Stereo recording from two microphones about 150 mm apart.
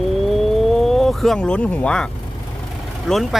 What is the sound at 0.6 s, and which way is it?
Speech, centre (ahead or behind).